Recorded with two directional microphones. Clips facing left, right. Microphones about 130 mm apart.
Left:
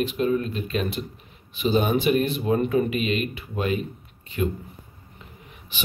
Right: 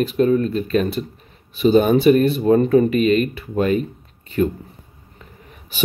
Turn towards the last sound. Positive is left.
turn(degrees=-40)  # may be behind; listen again after turning